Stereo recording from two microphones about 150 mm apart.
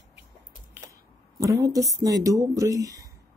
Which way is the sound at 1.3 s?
20° right (ahead or behind).